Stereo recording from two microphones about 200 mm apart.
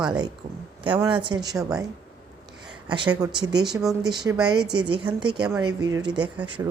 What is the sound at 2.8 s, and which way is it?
Speech, 25° right (ahead or behind).